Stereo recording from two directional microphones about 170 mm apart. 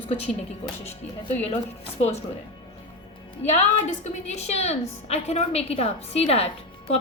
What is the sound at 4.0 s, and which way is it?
A woman's voice, 40° left (ahead or behind).